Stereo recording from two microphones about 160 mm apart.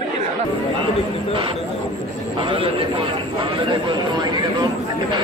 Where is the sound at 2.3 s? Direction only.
35° right (ahead or behind).